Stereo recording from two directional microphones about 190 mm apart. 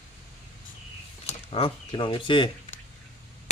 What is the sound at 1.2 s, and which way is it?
Speech, 30° left (ahead or behind).